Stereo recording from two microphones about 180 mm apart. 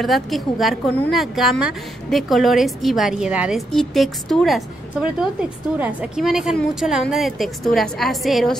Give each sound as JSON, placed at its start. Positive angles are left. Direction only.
{"t": 0.0, "sound": "a woman's voice", "side_deg": 0}